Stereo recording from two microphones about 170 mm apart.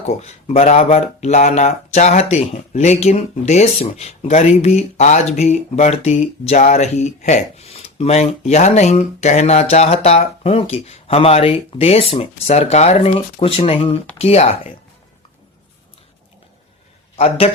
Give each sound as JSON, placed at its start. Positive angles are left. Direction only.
{"t": 0.1, "sound": "speech", "side_deg": 40}
{"t": 17.2, "sound": "speech", "side_deg": 35}